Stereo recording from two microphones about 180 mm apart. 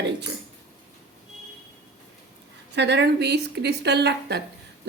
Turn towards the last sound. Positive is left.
turn(degrees=-70)  # may be behind; listen again after turning